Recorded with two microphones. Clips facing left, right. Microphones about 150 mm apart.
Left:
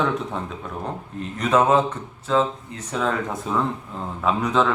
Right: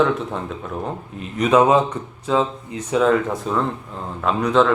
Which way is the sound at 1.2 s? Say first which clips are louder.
Right 4 dB; 10° right (ahead or behind).